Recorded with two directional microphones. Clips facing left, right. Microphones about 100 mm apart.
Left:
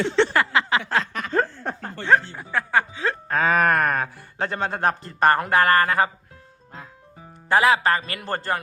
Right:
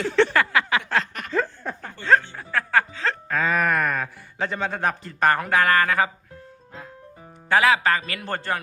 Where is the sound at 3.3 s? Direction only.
45° left (ahead or behind).